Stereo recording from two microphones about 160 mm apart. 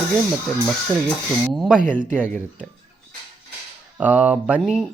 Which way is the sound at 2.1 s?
10° right (ahead or behind).